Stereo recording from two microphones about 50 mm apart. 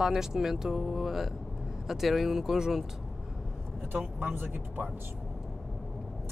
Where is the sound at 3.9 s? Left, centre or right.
Right.